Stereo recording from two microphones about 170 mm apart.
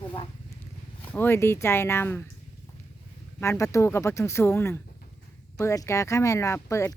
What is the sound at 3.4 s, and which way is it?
Speech, 15° left (ahead or behind).